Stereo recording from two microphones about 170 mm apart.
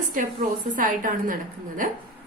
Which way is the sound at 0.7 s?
55° right (ahead or behind).